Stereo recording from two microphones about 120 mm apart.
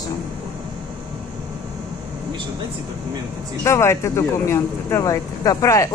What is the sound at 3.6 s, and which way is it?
Speech, 25° left (ahead or behind).